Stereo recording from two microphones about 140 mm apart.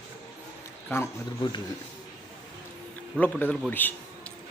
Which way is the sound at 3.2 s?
10° left (ahead or behind).